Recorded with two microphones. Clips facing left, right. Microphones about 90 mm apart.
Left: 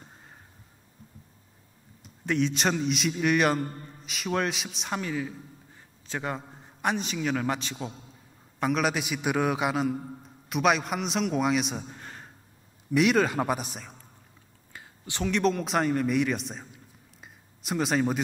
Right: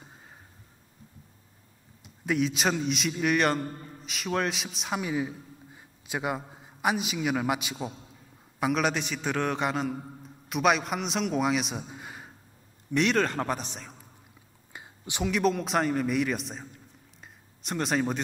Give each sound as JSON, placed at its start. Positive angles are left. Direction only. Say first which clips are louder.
{"t": 0.0, "sound": "a sound", "louder": "even", "side_deg": 0}
{"t": 2.2, "sound": "a man's voice", "louder": "even", "side_deg": -5}
{"t": 5.0, "sound": "a man's voice", "louder": "right 2 dB", "side_deg": -15}
{"t": 12.9, "sound": "a man's voice", "louder": "left 2 dB", "side_deg": 5}
{"t": 14.7, "sound": "whispering", "louder": "right 1 dB", "side_deg": -20}
{"t": 15.2, "sound": "a man's voice", "louder": "even", "side_deg": -5}